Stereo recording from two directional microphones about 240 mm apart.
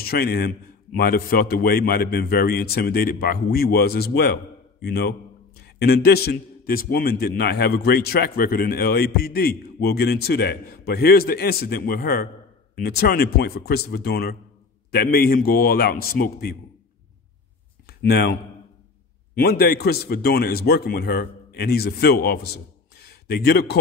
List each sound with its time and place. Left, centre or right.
0.0 s a man's voice: left
17.8 s a man's voice: left